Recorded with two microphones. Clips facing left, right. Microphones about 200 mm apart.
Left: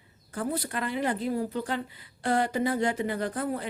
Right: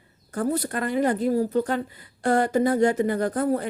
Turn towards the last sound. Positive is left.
turn(degrees=-45)  # may be behind; listen again after turning